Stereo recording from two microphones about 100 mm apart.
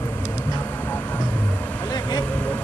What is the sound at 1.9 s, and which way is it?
Vehicle, 45° left (ahead or behind).